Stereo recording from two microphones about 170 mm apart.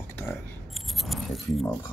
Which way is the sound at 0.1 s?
15° left (ahead or behind).